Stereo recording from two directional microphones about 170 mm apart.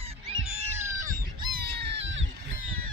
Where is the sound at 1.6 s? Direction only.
75° right (ahead or behind); by 2.2 s 90° right.